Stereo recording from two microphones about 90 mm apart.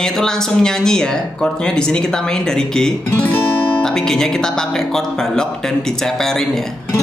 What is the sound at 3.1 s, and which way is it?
Guitar, 20° left (ahead or behind).